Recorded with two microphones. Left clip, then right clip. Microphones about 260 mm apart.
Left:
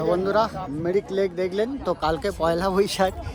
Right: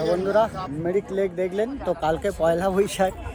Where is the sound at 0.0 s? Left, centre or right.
Centre.